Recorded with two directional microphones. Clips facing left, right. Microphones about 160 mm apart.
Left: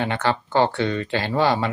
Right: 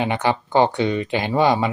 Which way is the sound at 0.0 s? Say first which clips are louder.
Right 2 dB; 15° right (ahead or behind).